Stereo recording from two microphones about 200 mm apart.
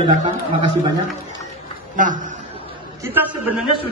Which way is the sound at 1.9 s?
40° right (ahead or behind).